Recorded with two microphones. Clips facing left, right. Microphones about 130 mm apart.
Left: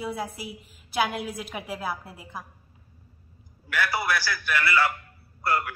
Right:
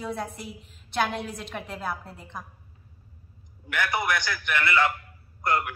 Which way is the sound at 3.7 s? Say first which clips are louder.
Even; 20° right (ahead or behind).